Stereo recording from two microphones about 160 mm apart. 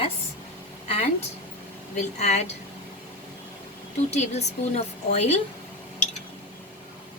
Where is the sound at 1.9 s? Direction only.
45° left (ahead or behind).